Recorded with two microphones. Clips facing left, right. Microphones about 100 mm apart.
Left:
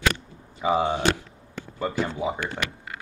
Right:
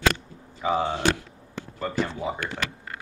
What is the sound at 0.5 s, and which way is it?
Speech, 15° left (ahead or behind).